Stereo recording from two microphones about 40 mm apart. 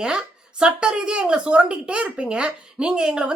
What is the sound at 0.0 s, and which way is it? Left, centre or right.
A woman's voice, right.